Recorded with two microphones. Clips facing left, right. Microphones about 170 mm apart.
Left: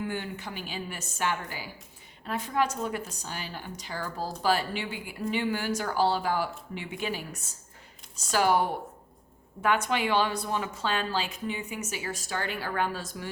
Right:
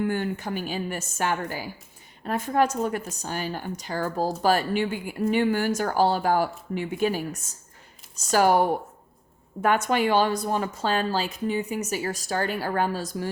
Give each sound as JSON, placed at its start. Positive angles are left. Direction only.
{"t": 0.0, "sound": "a woman's voice", "side_deg": -50}